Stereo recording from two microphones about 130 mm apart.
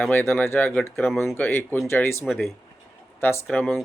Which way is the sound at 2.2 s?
Centre (ahead or behind).